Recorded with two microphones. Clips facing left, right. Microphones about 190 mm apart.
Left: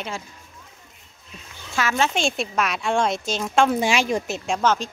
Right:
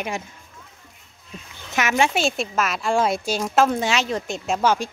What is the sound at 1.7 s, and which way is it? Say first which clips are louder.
Speech: right 2 dB; 20° right (ahead or behind).